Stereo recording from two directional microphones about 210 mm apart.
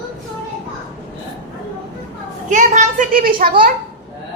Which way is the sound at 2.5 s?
35° right (ahead or behind).